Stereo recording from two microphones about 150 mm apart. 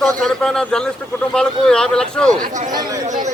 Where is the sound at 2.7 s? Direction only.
25° right (ahead or behind).